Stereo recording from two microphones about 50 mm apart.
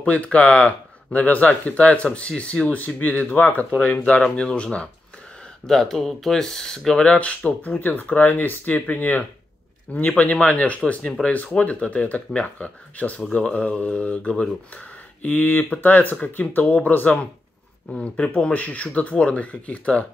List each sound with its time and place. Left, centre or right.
0.0 s speech: left
3.0 s speech: left
5.7 s speech: centre; by 7.8 s left
7.8 s speech: left
15.2 s speech: left